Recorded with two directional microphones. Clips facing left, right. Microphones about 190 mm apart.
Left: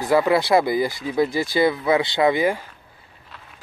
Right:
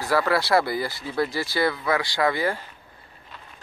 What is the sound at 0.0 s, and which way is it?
Speech, 20° left (ahead or behind).